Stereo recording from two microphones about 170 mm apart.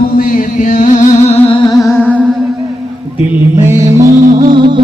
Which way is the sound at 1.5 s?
20° left (ahead or behind).